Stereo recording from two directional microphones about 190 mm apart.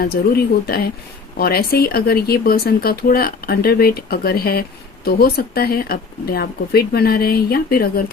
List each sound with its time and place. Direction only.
0.0 s speech: 55° left (ahead or behind)